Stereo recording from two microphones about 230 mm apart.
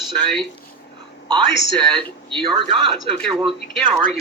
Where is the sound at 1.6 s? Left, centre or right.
Right.